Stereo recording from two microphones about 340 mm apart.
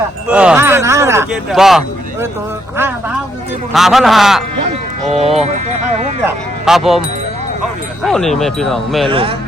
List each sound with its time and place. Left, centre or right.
0.3 s speech: centre
3.7 s speech: centre
5.0 s speech: centre
6.7 s speech: centre
8.0 s speech: centre
9.0 s speech: centre